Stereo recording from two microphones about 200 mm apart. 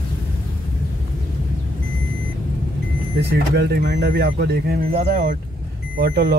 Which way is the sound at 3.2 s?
55° right (ahead or behind).